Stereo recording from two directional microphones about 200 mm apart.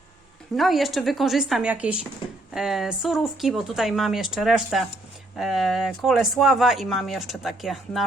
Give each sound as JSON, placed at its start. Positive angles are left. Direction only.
{"t": 0.5, "sound": "speech", "side_deg": 0}